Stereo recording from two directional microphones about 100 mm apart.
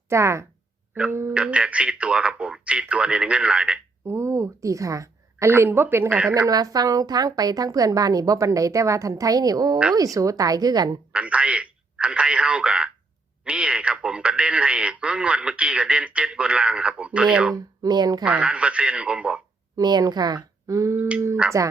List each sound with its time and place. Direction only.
0.1 s speech: 30° right (ahead or behind)
1.3 s a man's voice: 10° right (ahead or behind)
4.0 s a woman's voice: 25° right (ahead or behind)
5.5 s speech: 20° right (ahead or behind)
6.5 s a woman's voice: 40° right (ahead or behind)
11.1 s a man's voice: 10° right (ahead or behind)
17.5 s a woman's voice: 45° right (ahead or behind)
18.3 s a man's voice: 15° right (ahead or behind)
19.7 s a woman's voice: 40° right (ahead or behind)
21.4 s a man's voice: 10° right (ahead or behind)